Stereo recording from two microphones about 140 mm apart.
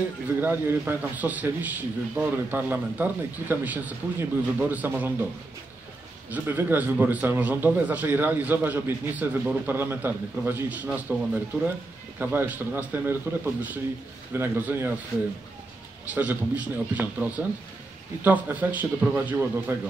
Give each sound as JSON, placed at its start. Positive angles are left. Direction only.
{"t": 0.4, "sound": "a man's voice", "side_deg": -15}
{"t": 6.3, "sound": "a man's voice", "side_deg": -15}
{"t": 16.1, "sound": "a man's voice", "side_deg": -10}